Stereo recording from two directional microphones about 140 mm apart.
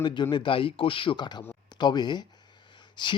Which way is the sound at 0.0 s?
35° left (ahead or behind).